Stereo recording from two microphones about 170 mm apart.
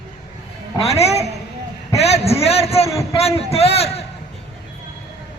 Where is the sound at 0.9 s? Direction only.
40° left (ahead or behind).